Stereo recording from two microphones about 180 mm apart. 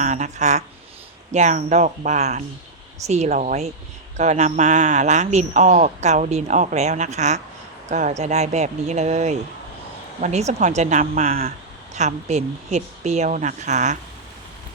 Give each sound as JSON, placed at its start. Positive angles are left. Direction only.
{"t": 0.0, "sound": "speech", "side_deg": -40}
{"t": 11.9, "sound": "speech", "side_deg": -40}